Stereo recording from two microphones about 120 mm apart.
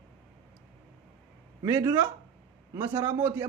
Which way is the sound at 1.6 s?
20° right (ahead or behind).